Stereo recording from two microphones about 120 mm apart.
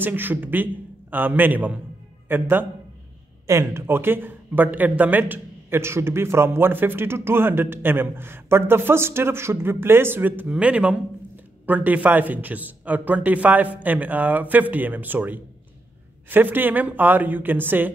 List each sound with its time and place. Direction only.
0.0 s a man's voice: 15° right (ahead or behind)